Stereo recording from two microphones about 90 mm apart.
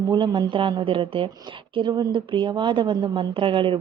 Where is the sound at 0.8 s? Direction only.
80° right.